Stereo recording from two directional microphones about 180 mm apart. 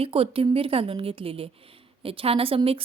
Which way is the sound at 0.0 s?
30° right (ahead or behind).